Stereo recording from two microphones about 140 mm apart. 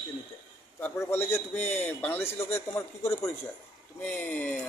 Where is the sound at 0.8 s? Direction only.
15° left (ahead or behind).